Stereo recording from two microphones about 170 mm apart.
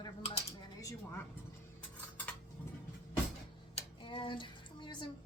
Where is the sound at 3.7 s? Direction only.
30° left (ahead or behind).